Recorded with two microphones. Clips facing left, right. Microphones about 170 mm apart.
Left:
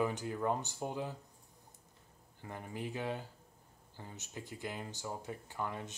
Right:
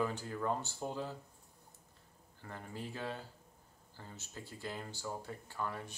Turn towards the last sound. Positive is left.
turn(degrees=20)  # may be behind; listen again after turning